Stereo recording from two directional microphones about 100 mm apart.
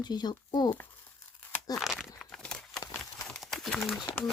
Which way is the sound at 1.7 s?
Centre (ahead or behind).